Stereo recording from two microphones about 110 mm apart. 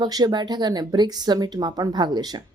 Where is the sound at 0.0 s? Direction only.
40° right (ahead or behind).